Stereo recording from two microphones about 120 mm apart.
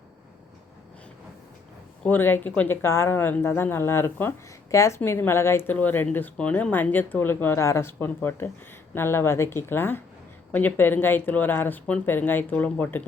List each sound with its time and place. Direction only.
2.0 s speech: 15° left (ahead or behind)